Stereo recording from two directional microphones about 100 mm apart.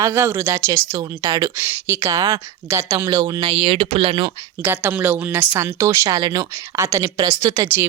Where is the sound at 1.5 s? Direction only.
25° right (ahead or behind).